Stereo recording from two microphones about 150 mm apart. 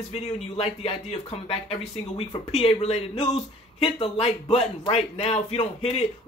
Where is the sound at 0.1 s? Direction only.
40° left (ahead or behind).